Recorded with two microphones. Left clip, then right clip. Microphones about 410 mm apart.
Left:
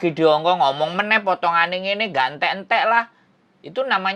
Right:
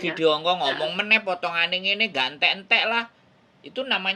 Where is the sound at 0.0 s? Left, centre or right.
Left.